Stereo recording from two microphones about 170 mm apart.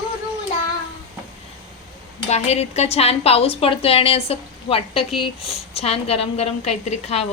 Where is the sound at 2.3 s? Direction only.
40° left (ahead or behind).